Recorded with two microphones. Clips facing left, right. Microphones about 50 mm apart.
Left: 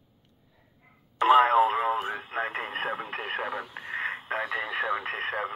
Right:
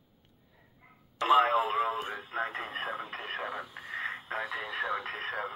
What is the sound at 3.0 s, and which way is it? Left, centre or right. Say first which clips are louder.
Radio: left 5 dB; left.